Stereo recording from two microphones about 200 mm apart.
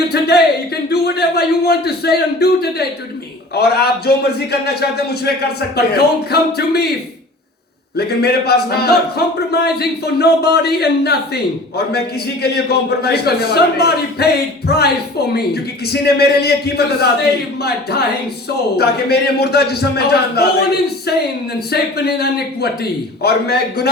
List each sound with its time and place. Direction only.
0.1 s speech: 50° left (ahead or behind)
7.9 s speech: 50° left (ahead or behind)
12.4 s speech: 55° left (ahead or behind)
15.9 s speech: 55° left (ahead or behind)
18.8 s speech: 55° left (ahead or behind)
21.7 s speech: 50° left (ahead or behind)